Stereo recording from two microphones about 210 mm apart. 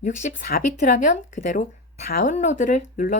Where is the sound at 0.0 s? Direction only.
35° left (ahead or behind).